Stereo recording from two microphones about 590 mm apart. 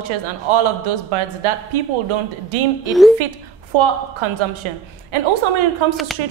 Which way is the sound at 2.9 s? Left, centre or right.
Centre.